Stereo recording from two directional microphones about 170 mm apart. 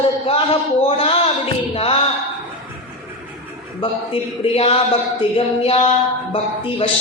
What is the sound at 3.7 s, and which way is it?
Speech, 35° left (ahead or behind).